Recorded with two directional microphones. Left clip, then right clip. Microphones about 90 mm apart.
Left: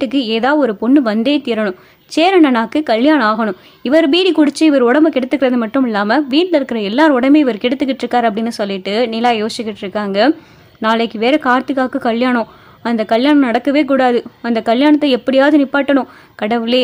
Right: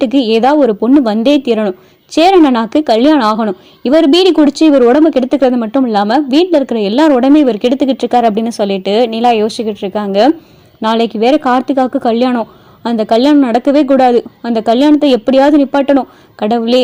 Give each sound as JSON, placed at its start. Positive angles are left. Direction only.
{"t": 0.0, "sound": "a woman's voice", "side_deg": -15}